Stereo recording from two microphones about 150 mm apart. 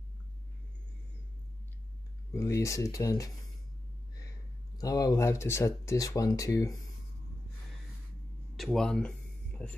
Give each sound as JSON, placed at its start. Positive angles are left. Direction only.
{"t": 2.3, "sound": "speech", "side_deg": 20}
{"t": 4.7, "sound": "speech", "side_deg": 25}
{"t": 8.5, "sound": "speech", "side_deg": 0}